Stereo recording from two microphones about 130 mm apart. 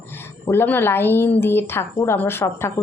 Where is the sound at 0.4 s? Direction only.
15° left (ahead or behind).